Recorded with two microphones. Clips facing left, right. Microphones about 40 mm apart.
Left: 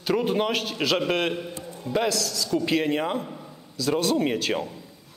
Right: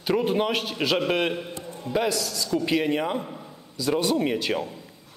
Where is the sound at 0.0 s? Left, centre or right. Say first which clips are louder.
Even; centre.